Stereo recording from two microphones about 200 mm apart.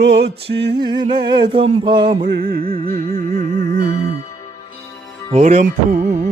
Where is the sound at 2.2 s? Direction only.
45° right (ahead or behind).